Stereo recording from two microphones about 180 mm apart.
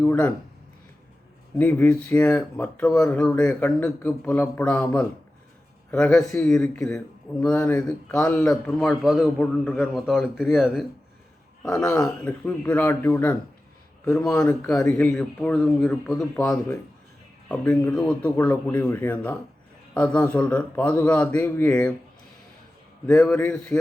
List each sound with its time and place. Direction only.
0.0 s speech: 10° left (ahead or behind)
1.5 s a man's voice: 10° left (ahead or behind)
23.0 s a man's voice: 5° left (ahead or behind)